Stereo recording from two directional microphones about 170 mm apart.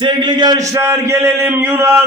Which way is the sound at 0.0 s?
25° right (ahead or behind).